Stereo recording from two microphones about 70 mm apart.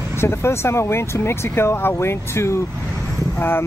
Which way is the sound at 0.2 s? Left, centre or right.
Left.